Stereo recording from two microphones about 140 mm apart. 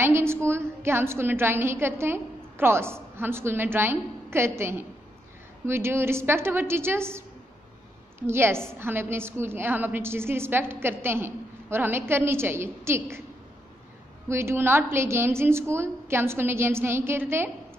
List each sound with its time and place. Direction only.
0.0 s a woman's voice: 15° right (ahead or behind)
14.3 s a woman's voice: 15° right (ahead or behind)